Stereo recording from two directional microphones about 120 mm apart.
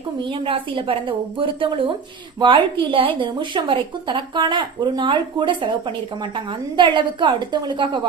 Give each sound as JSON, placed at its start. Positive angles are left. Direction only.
{"t": 0.2, "sound": "a woman's voice", "side_deg": -45}